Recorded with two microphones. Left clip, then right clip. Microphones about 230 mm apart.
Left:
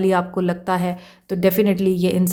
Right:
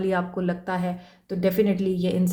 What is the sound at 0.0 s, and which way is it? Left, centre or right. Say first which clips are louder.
A woman's voice: left 6 dB; left.